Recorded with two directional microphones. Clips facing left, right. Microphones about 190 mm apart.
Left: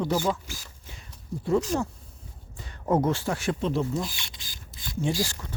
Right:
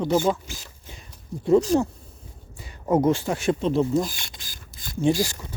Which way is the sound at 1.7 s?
35° right (ahead or behind).